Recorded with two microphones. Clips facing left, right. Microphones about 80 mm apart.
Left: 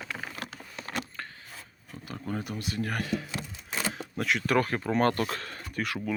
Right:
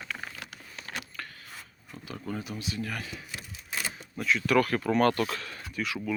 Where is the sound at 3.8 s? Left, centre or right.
Left.